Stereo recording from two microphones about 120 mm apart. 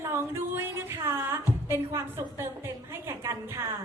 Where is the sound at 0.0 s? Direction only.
20° right (ahead or behind).